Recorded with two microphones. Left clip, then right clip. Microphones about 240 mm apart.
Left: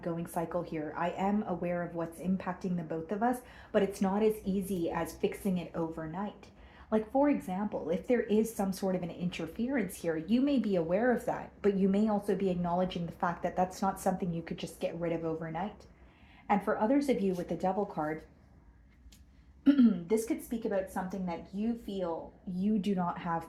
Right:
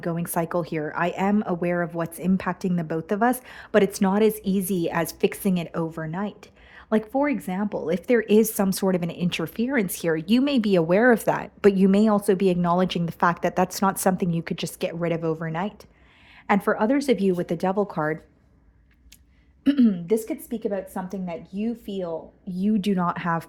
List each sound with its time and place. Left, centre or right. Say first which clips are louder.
0.0 s speech: right 8 dB; right
19.6 s speech: right 5 dB; right
22.6 s speech: right 8 dB; right